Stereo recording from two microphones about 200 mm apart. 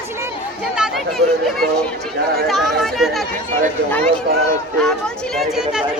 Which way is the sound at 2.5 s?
Centre (ahead or behind).